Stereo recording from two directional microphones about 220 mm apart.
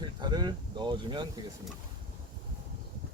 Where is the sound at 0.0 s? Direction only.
20° right (ahead or behind).